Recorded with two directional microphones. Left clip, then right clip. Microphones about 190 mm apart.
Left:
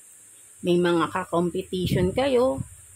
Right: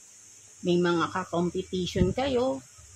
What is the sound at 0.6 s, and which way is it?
Speech, 40° left (ahead or behind).